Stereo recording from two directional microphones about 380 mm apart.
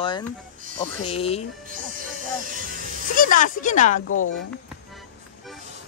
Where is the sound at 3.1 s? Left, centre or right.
Left.